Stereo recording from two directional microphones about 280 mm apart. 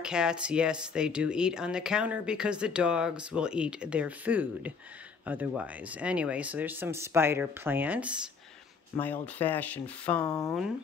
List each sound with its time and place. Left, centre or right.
0.0 s speech: centre
9.0 s speech: centre